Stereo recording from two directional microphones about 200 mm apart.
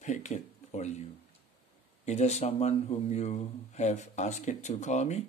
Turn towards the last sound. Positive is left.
turn(degrees=35)  # may be behind; listen again after turning